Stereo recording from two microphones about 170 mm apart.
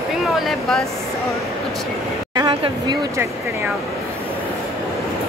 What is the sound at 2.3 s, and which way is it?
Speech, 25° right (ahead or behind).